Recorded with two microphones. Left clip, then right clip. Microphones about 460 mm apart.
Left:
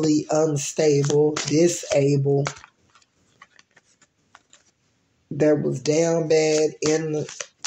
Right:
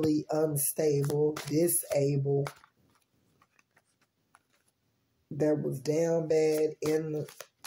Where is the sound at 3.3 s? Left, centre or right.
Right.